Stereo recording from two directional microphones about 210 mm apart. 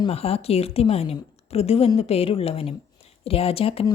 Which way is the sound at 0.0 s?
30° left (ahead or behind).